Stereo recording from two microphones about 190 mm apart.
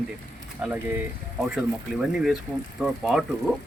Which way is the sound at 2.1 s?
Centre (ahead or behind).